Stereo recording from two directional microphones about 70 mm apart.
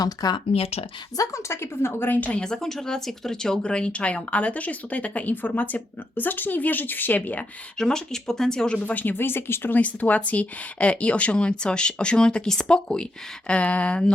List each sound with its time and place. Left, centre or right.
0.0 s speech: left
1.1 s a woman's voice: left
2.4 s speech: centre; by 7.2 s left
7.8 s speech: centre